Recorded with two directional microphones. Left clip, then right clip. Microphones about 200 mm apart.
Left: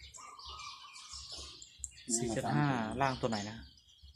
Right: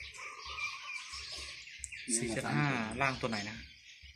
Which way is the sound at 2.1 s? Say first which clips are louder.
Left 1 dB; 25° left (ahead or behind).